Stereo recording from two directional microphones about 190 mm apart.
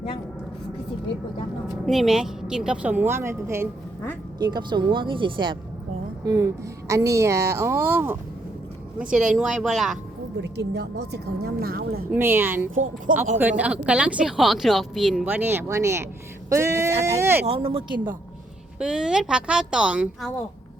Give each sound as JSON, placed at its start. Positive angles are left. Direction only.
{"t": 1.6, "sound": "a woman's voice", "side_deg": 0}
{"t": 10.4, "sound": "speech", "side_deg": -65}
{"t": 12.1, "sound": "speech", "side_deg": -10}
{"t": 13.1, "sound": "speech", "side_deg": -45}
{"t": 13.6, "sound": "speech", "side_deg": -5}
{"t": 17.4, "sound": "speech", "side_deg": -30}
{"t": 18.8, "sound": "a woman's voice", "side_deg": -5}